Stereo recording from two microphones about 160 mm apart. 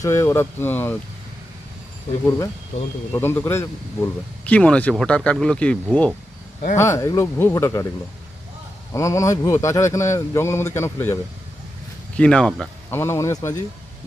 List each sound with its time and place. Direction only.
0.0 s speech: 15° left (ahead or behind)
3.1 s speech: 15° left (ahead or behind)
8.9 s speech: 20° left (ahead or behind)
12.9 s speech: 15° left (ahead or behind)